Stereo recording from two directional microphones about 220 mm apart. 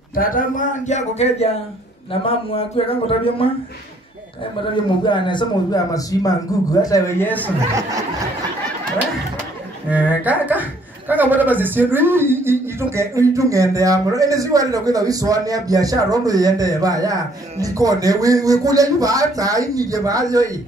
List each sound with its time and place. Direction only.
0.1 s a man's voice: 40° left (ahead or behind)
5.0 s a man's voice: 20° left (ahead or behind)
9.8 s a man's voice: 5° right (ahead or behind)